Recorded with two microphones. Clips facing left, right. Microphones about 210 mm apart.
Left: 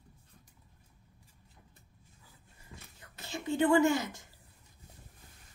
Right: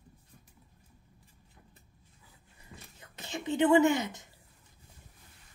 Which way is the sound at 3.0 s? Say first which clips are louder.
Right 2 dB; 20° right (ahead or behind).